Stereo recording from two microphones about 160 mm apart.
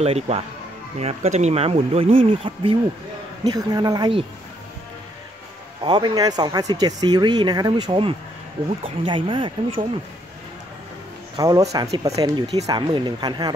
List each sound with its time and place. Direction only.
0.0 s speech: 40° right (ahead or behind)
5.9 s speech: 30° right (ahead or behind)
11.3 s speech: 25° right (ahead or behind)